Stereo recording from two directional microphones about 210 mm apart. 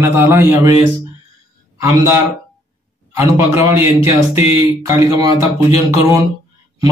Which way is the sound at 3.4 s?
10° right (ahead or behind).